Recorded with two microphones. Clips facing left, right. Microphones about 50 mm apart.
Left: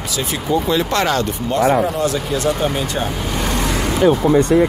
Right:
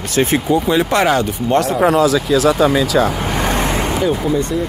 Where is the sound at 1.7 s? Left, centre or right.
Right.